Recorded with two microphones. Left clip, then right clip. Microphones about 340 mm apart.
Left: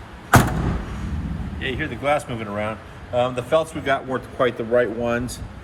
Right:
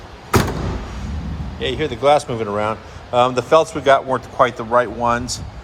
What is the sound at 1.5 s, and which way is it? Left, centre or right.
A man's voice, centre.